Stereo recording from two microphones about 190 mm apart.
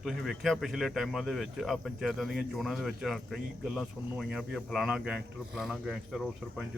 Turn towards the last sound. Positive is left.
turn(degrees=0)  # may be behind; listen again after turning